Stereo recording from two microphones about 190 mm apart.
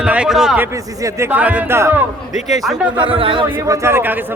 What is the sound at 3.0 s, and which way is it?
Speech, 30° right (ahead or behind).